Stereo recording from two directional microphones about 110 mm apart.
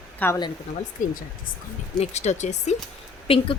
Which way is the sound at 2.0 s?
85° left.